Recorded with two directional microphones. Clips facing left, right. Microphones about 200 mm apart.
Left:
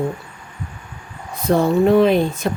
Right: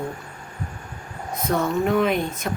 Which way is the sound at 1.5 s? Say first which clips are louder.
Left 7 dB; 30° left (ahead or behind).